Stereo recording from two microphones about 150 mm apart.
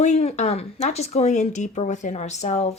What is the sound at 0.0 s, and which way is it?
Speech, 50° left (ahead or behind).